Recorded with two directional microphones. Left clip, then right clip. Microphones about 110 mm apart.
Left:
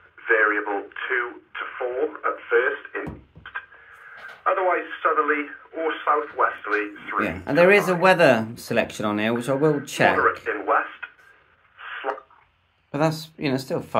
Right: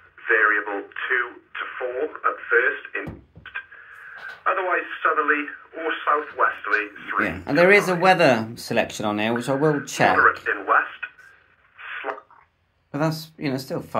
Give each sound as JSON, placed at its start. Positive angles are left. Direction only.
{"t": 0.2, "sound": "speech", "side_deg": 35}
{"t": 4.5, "sound": "speech", "side_deg": 35}
{"t": 7.2, "sound": "speech", "side_deg": 15}
{"t": 10.5, "sound": "speech", "side_deg": 30}
{"t": 11.8, "sound": "a sound", "side_deg": 35}
{"t": 12.9, "sound": "speech", "side_deg": 25}